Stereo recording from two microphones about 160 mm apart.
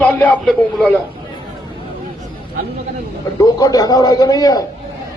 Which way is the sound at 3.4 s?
25° left (ahead or behind).